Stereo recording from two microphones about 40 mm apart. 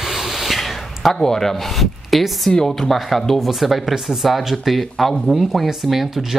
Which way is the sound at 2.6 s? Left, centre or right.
Centre.